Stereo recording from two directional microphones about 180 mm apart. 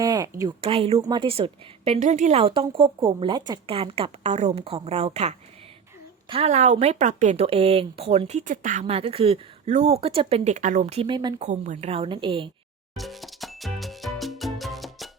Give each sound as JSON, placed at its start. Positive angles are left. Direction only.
{"t": 0.0, "sound": "a sound", "side_deg": -20}
{"t": 0.6, "sound": "speech", "side_deg": -30}
{"t": 11.3, "sound": "speech", "side_deg": -40}
{"t": 13.0, "sound": "music", "side_deg": 0}